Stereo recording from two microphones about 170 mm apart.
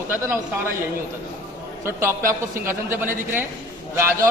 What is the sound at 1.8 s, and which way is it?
A man's voice, 15° right (ahead or behind).